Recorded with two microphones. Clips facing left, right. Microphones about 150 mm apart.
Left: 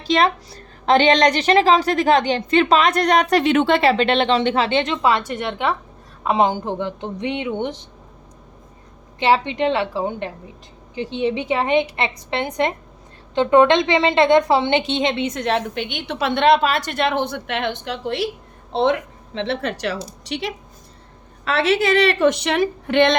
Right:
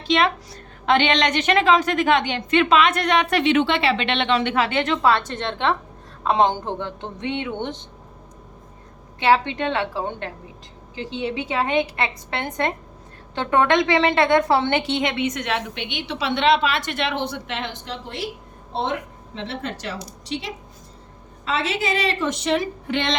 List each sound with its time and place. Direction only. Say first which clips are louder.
0.0 s a woman's voice: left 2 dB; 40° left (ahead or behind); by 7.9 s 10° left (ahead or behind)
9.1 s a woman's voice: left 1 dB; 20° left (ahead or behind); by 18.3 s 70° left (ahead or behind)
18.7 s a woman's voice: left 7 dB; 85° left; by 23.1 s 60° left (ahead or behind)